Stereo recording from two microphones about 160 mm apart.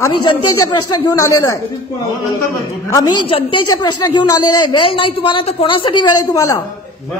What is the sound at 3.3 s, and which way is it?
A woman's voice, 30° left (ahead or behind).